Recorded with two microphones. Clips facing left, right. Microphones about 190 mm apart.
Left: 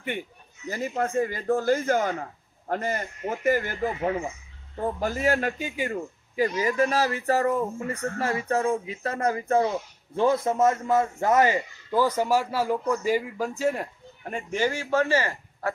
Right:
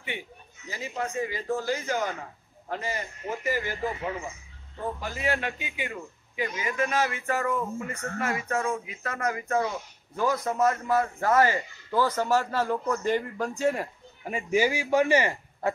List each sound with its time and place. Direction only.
0.7 s a man's voice: 50° left (ahead or behind); by 15.7 s 20° right (ahead or behind)